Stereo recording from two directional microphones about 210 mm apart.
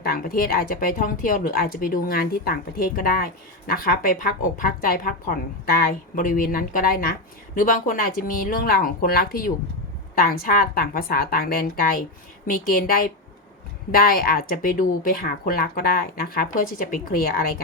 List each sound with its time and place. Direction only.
0.0 s a woman's voice: 45° left (ahead or behind)